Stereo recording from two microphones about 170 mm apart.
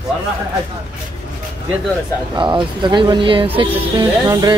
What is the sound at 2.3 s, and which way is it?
Speech, 25° right (ahead or behind).